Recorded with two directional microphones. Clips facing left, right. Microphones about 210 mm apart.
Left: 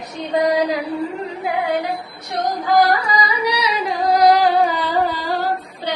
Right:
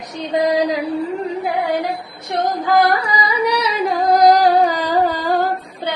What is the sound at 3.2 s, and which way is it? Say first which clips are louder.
Singing: right 3 dB; 55° right (ahead or behind).